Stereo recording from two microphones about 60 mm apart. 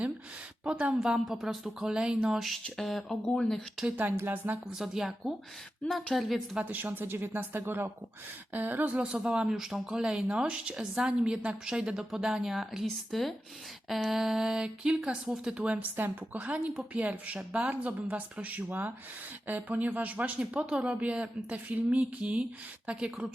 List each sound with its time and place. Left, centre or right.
0.6 s a woman's voice: centre
0.9 s a woman's voice: centre
2.6 s speech: centre
4.1 s speech: right
4.7 s a woman's voice: centre
6.6 s a woman's voice: right; by 23.2 s centre